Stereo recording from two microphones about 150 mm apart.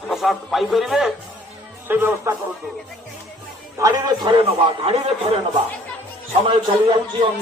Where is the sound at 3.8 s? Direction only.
25° right (ahead or behind).